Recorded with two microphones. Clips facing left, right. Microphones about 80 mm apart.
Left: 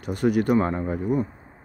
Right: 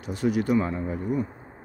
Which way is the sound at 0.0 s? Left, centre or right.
Left.